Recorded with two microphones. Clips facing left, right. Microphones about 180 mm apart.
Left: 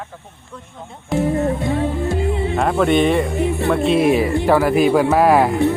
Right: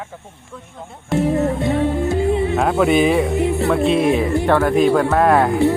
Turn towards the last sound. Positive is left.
turn(degrees=5)  # may be behind; listen again after turning